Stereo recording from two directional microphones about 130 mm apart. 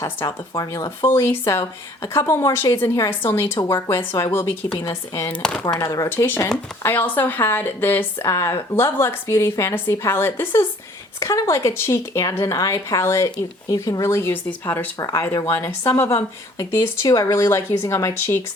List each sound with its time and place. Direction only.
0.0 s speech: 25° left (ahead or behind)
5.3 s speech: 5° left (ahead or behind)
5.6 s speech: 30° left (ahead or behind)
6.1 s speech: 15° left (ahead or behind)